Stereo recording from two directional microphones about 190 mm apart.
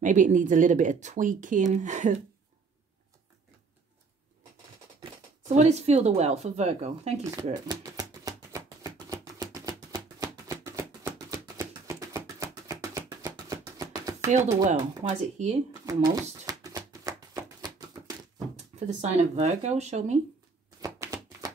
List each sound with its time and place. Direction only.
0.0 s speech: 40° right (ahead or behind)
5.0 s speech: 35° right (ahead or behind)
7.6 s a sound: 20° right (ahead or behind)
14.3 s speech: 40° right (ahead or behind)
15.8 s a sound: 20° right (ahead or behind)
18.9 s speech: 40° right (ahead or behind)
20.8 s typewriter: 20° right (ahead or behind)